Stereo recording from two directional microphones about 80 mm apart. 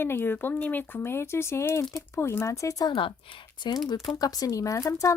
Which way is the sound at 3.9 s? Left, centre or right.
Left.